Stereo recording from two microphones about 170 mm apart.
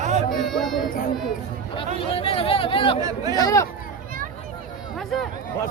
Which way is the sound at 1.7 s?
30° left (ahead or behind).